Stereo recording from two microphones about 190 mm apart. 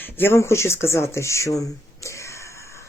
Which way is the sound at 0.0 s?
10° left (ahead or behind).